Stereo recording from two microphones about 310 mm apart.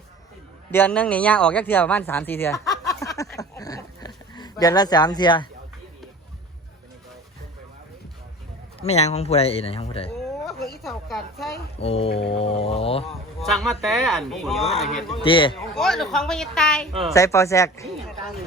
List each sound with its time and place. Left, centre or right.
0.7 s speech: centre
3.1 s a sound: centre
8.8 s speech: left
10.1 s a sound: centre
11.8 s speech: centre
13.4 s speech: centre
15.1 s speech: centre
15.5 s speech: centre